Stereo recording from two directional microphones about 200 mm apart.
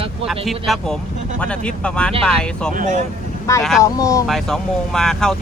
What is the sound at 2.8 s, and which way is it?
Speech, 40° right (ahead or behind).